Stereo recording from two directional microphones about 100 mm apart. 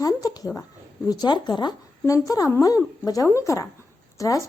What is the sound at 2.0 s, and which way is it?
Speech, 35° left (ahead or behind).